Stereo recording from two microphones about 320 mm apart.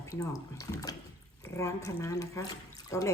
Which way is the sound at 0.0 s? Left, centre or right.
Centre.